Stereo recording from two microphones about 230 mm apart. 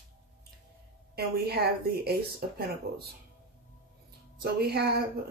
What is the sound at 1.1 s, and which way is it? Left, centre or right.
A woman's voice, right.